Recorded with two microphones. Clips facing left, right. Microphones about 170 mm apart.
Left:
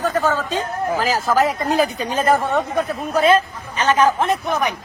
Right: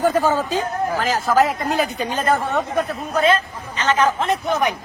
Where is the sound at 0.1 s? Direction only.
20° right (ahead or behind).